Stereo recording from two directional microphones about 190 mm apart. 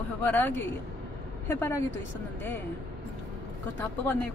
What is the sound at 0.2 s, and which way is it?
Speech, 10° left (ahead or behind).